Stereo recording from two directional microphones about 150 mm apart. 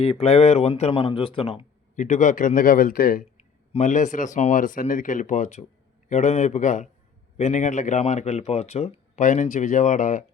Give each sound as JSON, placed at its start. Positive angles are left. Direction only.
{"t": 0.2, "sound": "speech", "side_deg": 45}
{"t": 2.0, "sound": "a man's voice", "side_deg": 55}
{"t": 3.7, "sound": "speech", "side_deg": 50}